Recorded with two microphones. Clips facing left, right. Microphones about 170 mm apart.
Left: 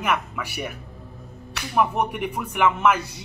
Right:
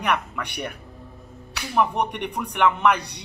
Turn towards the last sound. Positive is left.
turn(degrees=5)  # may be behind; listen again after turning